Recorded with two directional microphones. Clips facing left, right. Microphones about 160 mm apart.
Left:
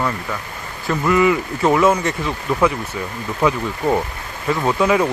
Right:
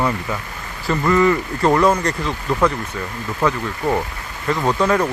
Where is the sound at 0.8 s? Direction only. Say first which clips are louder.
Even; centre (ahead or behind).